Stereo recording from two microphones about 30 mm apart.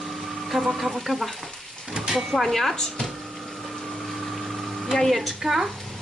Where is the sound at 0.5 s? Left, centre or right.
Centre.